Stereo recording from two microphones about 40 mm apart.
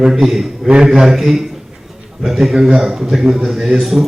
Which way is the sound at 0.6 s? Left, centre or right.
Right.